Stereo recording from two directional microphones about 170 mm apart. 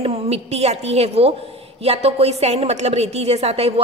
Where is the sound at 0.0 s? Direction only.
35° right (ahead or behind).